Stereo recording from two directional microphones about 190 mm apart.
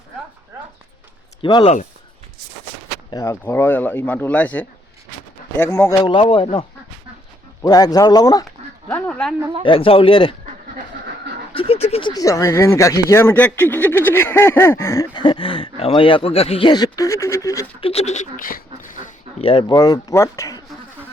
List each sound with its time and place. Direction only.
1.4 s speech: 25° left (ahead or behind)
3.1 s speech: 15° left (ahead or behind)
6.2 s speech: 25° left (ahead or behind)
8.9 s speech: 5° left (ahead or behind)
9.6 s speech: 30° left (ahead or behind)
11.5 s speech: 30° left (ahead or behind)
17.7 s speech: 30° left (ahead or behind); by 19.1 s 45° left (ahead or behind)
19.4 s speech: 30° left (ahead or behind)